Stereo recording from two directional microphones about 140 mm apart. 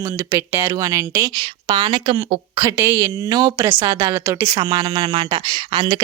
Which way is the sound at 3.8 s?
30° right (ahead or behind).